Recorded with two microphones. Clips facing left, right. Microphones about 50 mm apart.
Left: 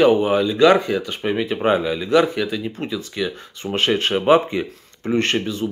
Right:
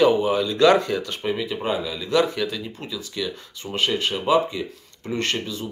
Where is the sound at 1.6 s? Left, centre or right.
Left; by 2.7 s centre.